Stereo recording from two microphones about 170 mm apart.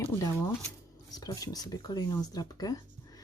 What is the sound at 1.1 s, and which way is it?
Speech, 20° left (ahead or behind).